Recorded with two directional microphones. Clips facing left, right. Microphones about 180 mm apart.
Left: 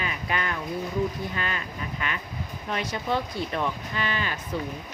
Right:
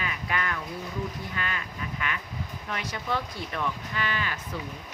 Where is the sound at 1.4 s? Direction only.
30° left (ahead or behind).